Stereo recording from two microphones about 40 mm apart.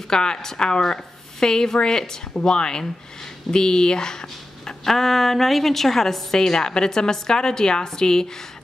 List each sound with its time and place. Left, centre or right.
0.1 s speech: centre